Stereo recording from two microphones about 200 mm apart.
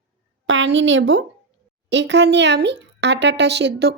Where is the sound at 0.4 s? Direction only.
70° right (ahead or behind).